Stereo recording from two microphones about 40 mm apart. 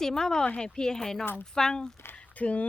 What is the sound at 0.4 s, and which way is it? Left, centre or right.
Speech, left.